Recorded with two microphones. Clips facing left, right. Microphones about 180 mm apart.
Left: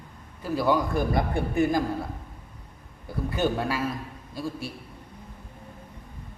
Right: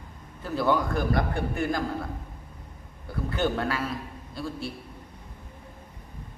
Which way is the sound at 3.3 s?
10° left (ahead or behind).